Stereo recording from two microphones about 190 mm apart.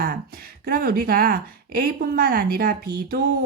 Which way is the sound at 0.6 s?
50° right (ahead or behind).